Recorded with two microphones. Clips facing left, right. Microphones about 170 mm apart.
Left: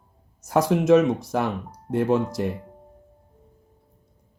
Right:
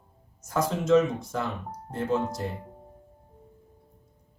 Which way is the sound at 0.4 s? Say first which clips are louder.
Left 7 dB; 75° left (ahead or behind).